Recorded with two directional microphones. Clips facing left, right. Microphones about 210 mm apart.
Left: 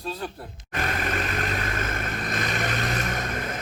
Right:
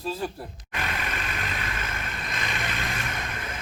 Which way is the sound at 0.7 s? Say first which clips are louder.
Left 5 dB; 45° left (ahead or behind).